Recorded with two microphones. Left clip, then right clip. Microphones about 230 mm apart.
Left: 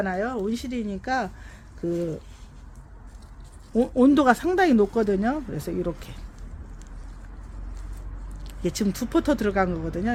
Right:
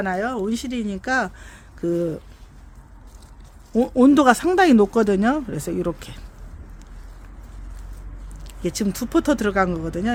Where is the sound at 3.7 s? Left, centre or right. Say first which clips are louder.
Right 4 dB; centre.